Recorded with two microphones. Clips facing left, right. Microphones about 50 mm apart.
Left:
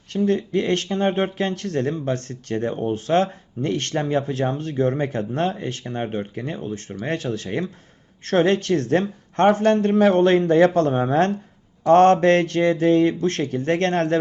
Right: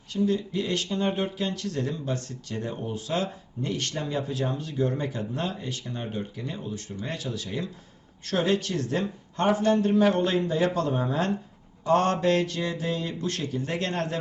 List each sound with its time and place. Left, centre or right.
0.1 s speech: left